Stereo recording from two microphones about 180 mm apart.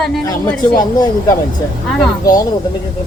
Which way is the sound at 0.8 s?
20° left (ahead or behind).